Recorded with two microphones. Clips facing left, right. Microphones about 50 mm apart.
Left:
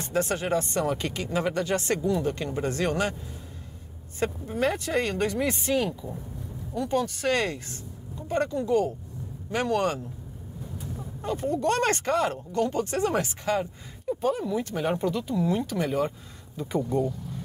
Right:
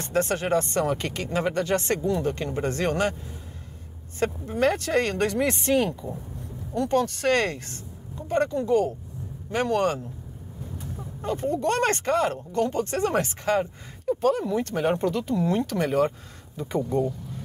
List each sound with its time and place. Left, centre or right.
0.0 s speech: right
4.6 s speech: right
11.2 s speech: right
16.5 s speech: right